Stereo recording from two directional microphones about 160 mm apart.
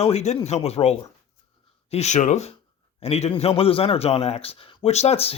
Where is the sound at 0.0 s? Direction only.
45° left (ahead or behind).